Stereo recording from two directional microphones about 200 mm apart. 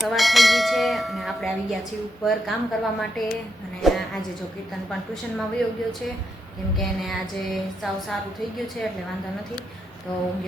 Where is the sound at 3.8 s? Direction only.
Centre (ahead or behind).